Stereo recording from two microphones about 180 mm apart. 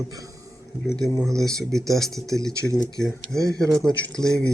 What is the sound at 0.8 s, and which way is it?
Speech, centre (ahead or behind).